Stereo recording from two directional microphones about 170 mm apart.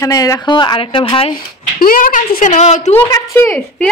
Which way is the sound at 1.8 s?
55° left (ahead or behind).